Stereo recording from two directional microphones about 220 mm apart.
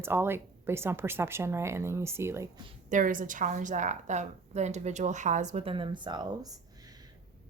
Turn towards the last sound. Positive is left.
turn(degrees=-20)  # may be behind; listen again after turning